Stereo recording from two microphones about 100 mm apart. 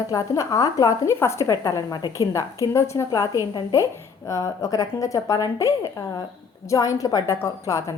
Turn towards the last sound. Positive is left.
turn(degrees=30)  # may be behind; listen again after turning